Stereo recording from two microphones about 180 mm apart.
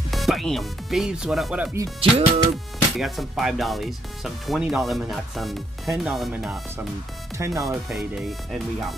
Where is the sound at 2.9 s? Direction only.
Centre (ahead or behind).